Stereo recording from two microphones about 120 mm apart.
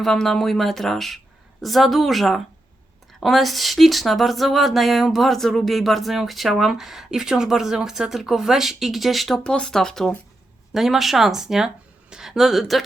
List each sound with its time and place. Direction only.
0.0 s speech: 5° left (ahead or behind)